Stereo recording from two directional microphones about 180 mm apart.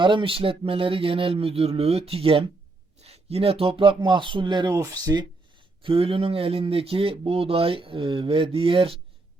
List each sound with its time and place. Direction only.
0.0 s speech: 25° right (ahead or behind)
5.8 s speech: 30° right (ahead or behind)